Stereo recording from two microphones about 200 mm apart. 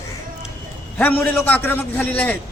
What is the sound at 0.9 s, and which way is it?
Speech, 5° left (ahead or behind).